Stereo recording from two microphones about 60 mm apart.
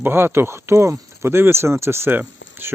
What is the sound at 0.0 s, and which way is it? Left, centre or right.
Speech, right.